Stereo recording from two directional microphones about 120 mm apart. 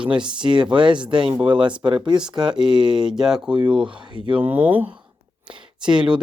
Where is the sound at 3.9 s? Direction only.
40° right (ahead or behind).